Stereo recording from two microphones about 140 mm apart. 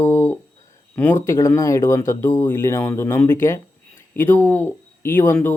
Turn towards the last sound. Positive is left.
turn(degrees=15)  # may be behind; listen again after turning